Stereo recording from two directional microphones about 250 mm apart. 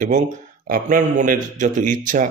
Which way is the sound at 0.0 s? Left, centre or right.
Right.